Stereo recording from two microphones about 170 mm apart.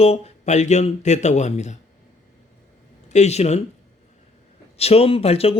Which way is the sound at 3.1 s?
40° left (ahead or behind).